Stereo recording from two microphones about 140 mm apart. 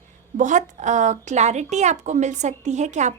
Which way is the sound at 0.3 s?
60° right (ahead or behind).